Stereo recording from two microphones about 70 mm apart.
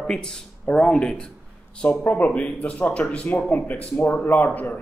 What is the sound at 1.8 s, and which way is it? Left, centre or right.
A man's voice, left.